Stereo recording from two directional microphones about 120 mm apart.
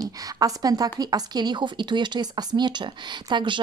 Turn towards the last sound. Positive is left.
turn(degrees=-40)  # may be behind; listen again after turning